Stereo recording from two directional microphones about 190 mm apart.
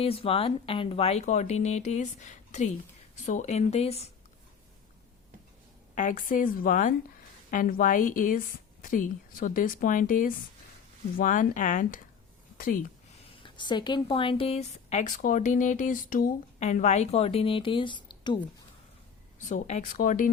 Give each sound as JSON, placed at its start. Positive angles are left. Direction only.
{"t": 0.0, "sound": "a woman's voice", "side_deg": 30}
{"t": 5.9, "sound": "a woman's voice", "side_deg": 40}
{"t": 13.4, "sound": "a woman's voice", "side_deg": 25}
{"t": 19.5, "sound": "a woman's voice", "side_deg": 40}